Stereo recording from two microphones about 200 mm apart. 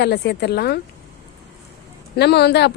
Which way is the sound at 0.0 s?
55° left (ahead or behind).